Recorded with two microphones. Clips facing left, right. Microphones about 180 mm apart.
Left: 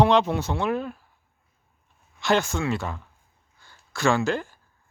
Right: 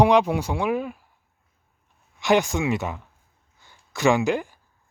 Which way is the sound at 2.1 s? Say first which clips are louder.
Right 3 dB; 15° right (ahead or behind).